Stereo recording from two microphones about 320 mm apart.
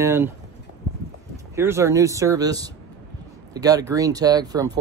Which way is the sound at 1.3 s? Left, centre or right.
Centre.